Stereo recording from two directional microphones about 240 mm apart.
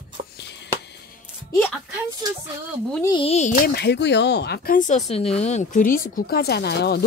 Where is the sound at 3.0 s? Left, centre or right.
Left.